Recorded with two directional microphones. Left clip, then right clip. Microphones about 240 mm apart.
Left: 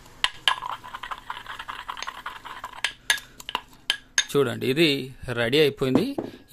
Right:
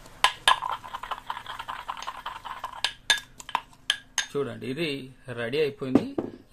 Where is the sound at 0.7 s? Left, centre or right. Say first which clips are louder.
Right 1 dB; centre.